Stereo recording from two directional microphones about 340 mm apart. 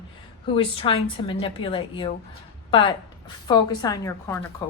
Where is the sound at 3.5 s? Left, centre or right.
Centre.